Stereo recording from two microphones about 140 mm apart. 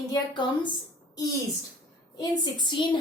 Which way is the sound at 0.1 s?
30° left (ahead or behind).